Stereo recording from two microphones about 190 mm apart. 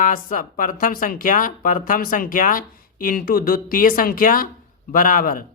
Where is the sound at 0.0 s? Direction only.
45° left (ahead or behind).